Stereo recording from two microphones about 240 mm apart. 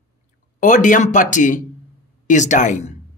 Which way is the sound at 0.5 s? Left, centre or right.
Left.